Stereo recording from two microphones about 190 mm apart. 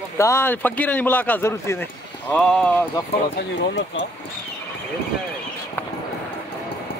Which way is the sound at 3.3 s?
70° left (ahead or behind).